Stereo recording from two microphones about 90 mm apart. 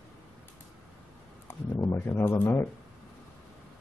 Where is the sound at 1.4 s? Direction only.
30° left (ahead or behind).